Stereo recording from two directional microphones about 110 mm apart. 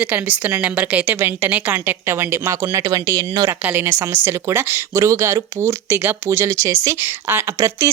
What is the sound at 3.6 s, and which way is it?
A woman's voice, 20° right (ahead or behind).